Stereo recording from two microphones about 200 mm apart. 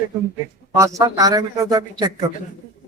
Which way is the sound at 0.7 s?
15° right (ahead or behind).